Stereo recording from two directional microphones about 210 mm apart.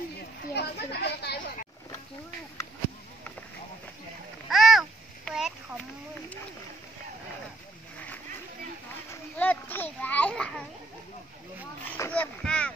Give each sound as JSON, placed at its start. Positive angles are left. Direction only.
{"t": 0.6, "sound": "speech", "side_deg": 50}
{"t": 4.5, "sound": "babbling", "side_deg": 0}
{"t": 9.4, "sound": "children playing", "side_deg": 10}
{"t": 11.8, "sound": "splash", "side_deg": 10}